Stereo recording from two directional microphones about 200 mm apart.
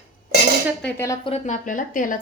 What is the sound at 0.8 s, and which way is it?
Speech, 15° left (ahead or behind).